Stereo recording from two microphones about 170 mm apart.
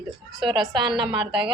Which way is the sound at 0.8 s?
30° right (ahead or behind).